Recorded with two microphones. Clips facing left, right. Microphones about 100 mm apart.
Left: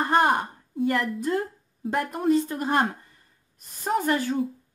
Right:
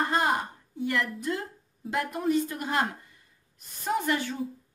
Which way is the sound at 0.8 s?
40° left (ahead or behind).